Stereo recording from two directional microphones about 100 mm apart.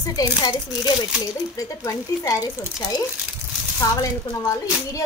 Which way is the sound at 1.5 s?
30° left (ahead or behind).